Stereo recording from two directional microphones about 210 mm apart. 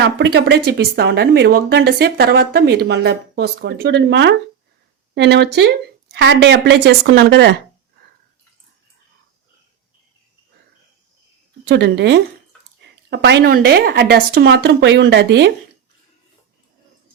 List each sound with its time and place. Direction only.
0.0 s speech: 55° right (ahead or behind)
11.6 s a woman's voice: 55° right (ahead or behind)